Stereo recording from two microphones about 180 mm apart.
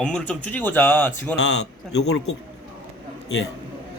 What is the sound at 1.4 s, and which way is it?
Speech, 75° left (ahead or behind).